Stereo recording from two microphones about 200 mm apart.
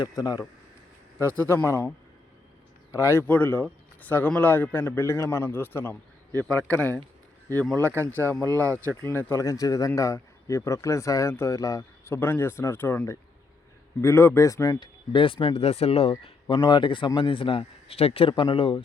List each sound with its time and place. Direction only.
0.0 s a man's voice: 20° left (ahead or behind)
2.9 s speech: 15° left (ahead or behind)
7.5 s speech: 5° left (ahead or behind)
8.4 s speech: 15° right (ahead or behind)
9.0 s a man's voice: 10° left (ahead or behind); by 18.8 s 25° left (ahead or behind)